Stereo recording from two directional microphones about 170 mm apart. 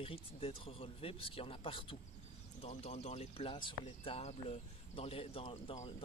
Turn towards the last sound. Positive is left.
turn(degrees=35)  # may be behind; listen again after turning